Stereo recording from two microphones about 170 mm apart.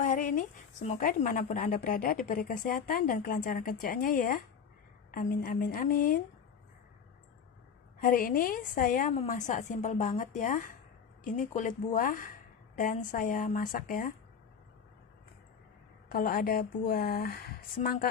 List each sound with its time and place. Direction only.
0.0 s a woman's voice: 50° left (ahead or behind)
8.0 s speech: 55° left (ahead or behind)
16.1 s a woman's voice: 55° left (ahead or behind)